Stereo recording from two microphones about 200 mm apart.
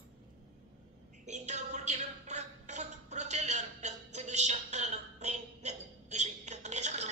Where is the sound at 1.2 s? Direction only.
35° right (ahead or behind).